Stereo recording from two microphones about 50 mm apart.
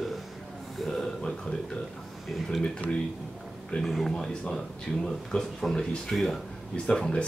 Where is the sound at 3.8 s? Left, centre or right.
Centre.